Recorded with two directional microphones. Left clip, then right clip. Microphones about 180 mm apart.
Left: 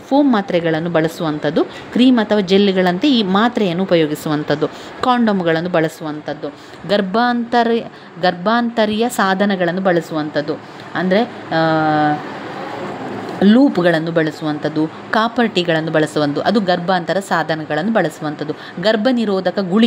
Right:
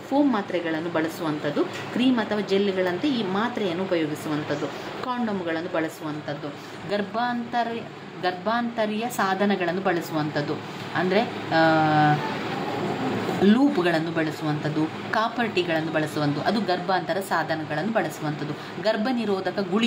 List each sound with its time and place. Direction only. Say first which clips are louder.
0.1 s speech: left 9 dB; 50° left (ahead or behind)
13.4 s speech: left 9 dB; 40° left (ahead or behind)